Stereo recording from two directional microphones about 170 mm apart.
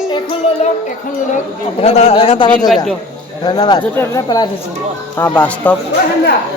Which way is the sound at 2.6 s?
Centre (ahead or behind).